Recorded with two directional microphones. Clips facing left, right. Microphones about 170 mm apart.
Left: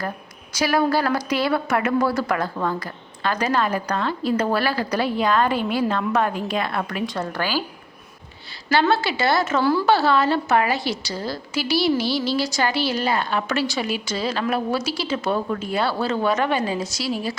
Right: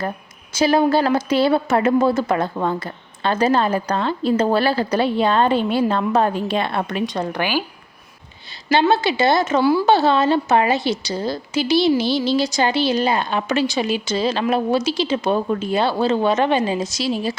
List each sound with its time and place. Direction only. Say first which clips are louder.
0.5 s a woman's voice: right 4 dB; 25° right (ahead or behind)
8.7 s a woman's voice: right 3 dB; 20° right (ahead or behind)